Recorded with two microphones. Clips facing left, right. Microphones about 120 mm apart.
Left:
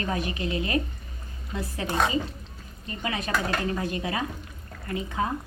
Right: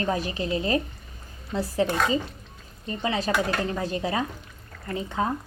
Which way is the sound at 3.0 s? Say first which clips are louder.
Right 3 dB; 30° right (ahead or behind).